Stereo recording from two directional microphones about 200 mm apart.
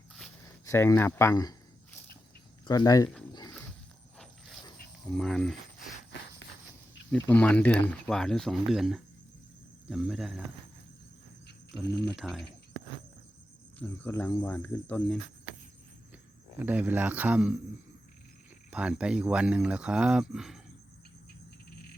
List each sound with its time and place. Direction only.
0.6 s speech: 15° left (ahead or behind)
4.2 s a sound: centre (ahead or behind)
5.1 s speech: centre (ahead or behind)
7.1 s speech: 5° left (ahead or behind)
12.1 s speech: centre (ahead or behind)
13.7 s speech: 10° left (ahead or behind)
16.6 s speech: 5° right (ahead or behind)
18.7 s speech: 5° right (ahead or behind)